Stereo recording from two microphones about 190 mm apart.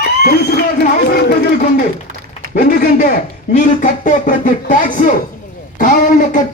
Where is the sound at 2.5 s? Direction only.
50° left (ahead or behind).